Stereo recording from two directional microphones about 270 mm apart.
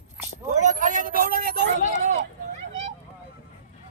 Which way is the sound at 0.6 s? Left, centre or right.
Right.